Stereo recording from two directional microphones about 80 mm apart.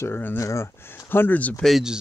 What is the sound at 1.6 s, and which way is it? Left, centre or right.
Speech, centre.